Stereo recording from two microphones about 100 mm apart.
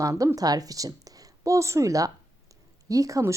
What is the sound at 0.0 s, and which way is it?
A woman's voice, 30° right (ahead or behind).